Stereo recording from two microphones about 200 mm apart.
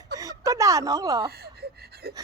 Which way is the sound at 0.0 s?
15° right (ahead or behind).